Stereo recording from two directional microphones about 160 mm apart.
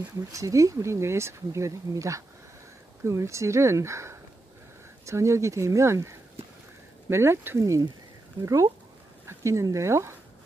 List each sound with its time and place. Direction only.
0.0 s speech: 20° right (ahead or behind)